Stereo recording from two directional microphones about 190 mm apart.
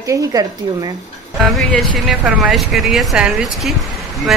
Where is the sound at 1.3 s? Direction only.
Centre (ahead or behind).